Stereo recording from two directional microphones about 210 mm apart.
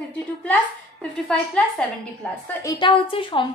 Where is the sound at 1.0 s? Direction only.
5° left (ahead or behind).